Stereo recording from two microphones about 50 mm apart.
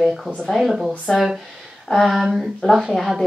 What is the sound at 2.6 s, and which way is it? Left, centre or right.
Speech, centre.